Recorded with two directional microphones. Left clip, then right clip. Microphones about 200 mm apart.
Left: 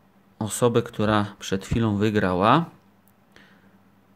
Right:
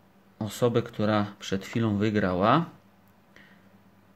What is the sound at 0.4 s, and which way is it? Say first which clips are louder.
Speech: left 4 dB; 20° left (ahead or behind).